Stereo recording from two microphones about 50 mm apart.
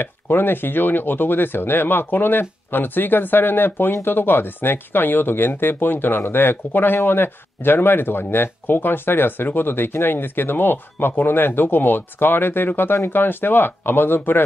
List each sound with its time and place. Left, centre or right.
0.0 s speech: left